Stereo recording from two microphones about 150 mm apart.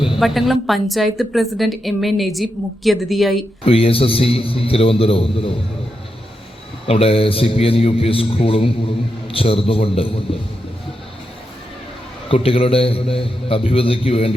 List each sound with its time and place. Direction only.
0.2 s a woman's voice: centre (ahead or behind)
3.7 s a man's voice: 40° left (ahead or behind)
6.8 s a man's voice: 40° left (ahead or behind)
12.3 s a man's voice: 40° left (ahead or behind)